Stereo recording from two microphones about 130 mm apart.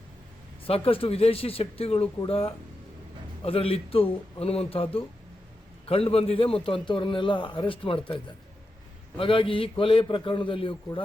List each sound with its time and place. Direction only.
0.7 s a man's voice: 45° left (ahead or behind)